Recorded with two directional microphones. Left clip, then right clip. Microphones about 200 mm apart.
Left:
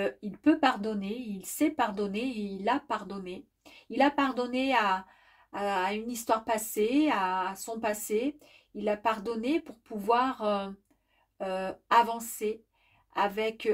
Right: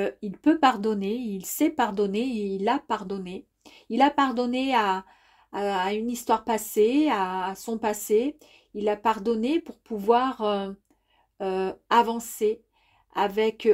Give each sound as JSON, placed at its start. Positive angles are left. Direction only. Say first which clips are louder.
{"t": 0.0, "sound": "a woman's voice", "louder": "right 3 dB", "side_deg": -40}